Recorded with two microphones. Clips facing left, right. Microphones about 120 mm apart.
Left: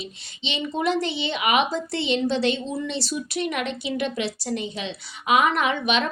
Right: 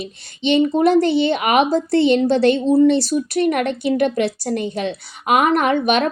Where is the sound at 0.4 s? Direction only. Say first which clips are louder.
Right 10 dB; 50° right (ahead or behind).